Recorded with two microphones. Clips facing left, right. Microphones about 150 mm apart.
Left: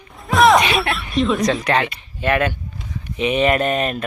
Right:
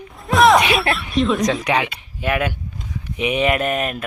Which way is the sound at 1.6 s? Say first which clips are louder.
Left 1 dB; 10° right (ahead or behind).